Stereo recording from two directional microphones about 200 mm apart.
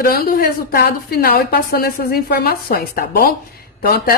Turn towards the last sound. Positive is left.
turn(degrees=50)  # may be behind; listen again after turning